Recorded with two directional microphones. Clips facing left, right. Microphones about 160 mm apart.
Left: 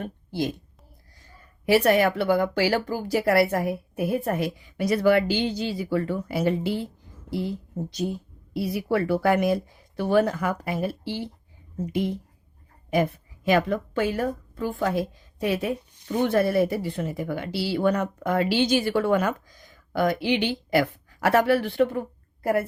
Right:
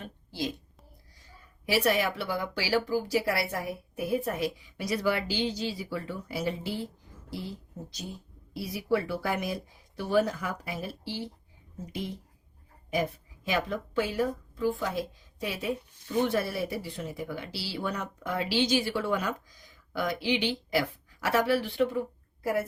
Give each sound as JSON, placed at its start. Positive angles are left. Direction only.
{"t": 0.0, "sound": "a woman's voice", "side_deg": 55}
{"t": 1.6, "sound": "speech", "side_deg": 55}
{"t": 8.5, "sound": "a woman's voice", "side_deg": 60}